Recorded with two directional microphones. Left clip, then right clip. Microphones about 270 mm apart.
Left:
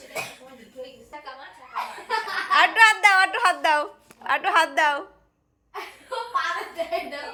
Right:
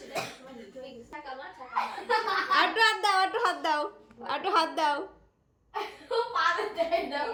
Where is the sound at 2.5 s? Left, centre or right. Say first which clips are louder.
Left 9 dB; centre.